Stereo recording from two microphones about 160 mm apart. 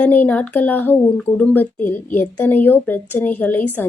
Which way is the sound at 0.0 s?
10° left (ahead or behind).